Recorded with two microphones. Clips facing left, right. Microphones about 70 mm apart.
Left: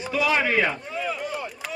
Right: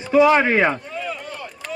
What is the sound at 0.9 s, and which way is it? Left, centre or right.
Chop, centre.